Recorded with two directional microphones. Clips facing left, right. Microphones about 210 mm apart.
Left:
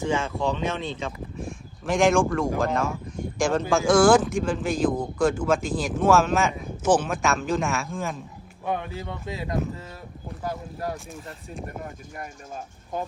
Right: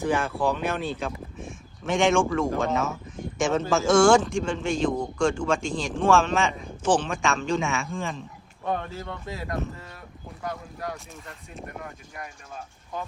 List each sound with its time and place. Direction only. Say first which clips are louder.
0.3 s speech: even; 5° right (ahead or behind); by 10.9 s 30° left (ahead or behind)
12.5 s speech: left 4 dB; 45° left (ahead or behind)